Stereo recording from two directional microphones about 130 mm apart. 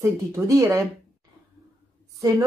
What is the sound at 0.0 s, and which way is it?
Speech, 25° right (ahead or behind).